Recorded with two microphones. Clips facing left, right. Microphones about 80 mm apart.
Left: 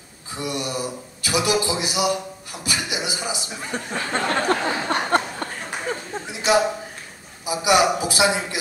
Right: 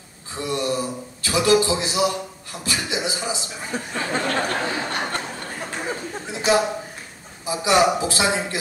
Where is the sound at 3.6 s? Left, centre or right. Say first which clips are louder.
Right 1 dB; centre.